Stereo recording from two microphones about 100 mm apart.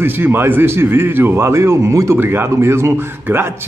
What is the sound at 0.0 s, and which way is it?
A man's voice, 20° right (ahead or behind).